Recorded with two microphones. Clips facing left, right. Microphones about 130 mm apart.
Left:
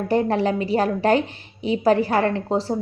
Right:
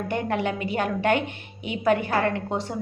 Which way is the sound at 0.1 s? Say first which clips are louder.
Left 7 dB; 35° left (ahead or behind).